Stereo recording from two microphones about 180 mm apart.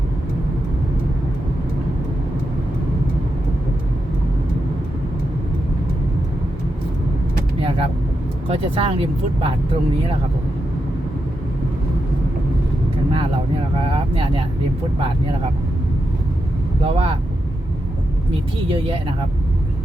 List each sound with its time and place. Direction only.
7.6 s vehicle: 30° right (ahead or behind)
8.4 s speech: 30° right (ahead or behind)
13.8 s speech: 30° right (ahead or behind)
16.8 s speech: 30° right (ahead or behind)
18.7 s speech: 30° right (ahead or behind)